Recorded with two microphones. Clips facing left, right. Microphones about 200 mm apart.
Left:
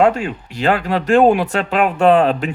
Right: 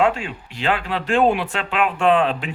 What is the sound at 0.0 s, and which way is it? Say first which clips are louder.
Speech: left 5 dB; 40° left (ahead or behind).